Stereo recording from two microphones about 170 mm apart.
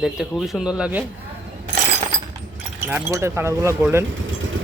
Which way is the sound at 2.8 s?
15° right (ahead or behind).